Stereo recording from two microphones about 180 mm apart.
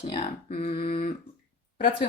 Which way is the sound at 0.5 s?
40° left (ahead or behind).